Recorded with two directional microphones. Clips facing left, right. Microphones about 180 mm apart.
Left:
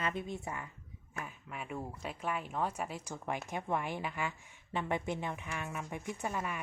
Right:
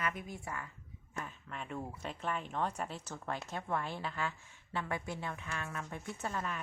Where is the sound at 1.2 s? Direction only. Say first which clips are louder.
Even; 10° left (ahead or behind).